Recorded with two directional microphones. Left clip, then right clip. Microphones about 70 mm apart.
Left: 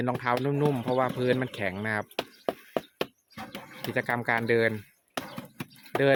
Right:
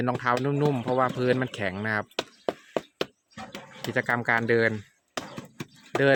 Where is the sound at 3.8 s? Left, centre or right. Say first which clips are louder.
Right 3 dB; right.